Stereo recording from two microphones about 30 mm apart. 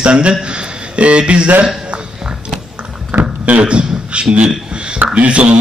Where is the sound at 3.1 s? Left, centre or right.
Right.